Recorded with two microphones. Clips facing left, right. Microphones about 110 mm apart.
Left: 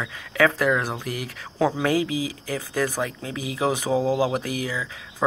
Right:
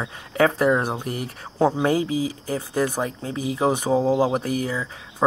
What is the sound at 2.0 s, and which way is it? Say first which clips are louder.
Speech: right 3 dB; 90° left.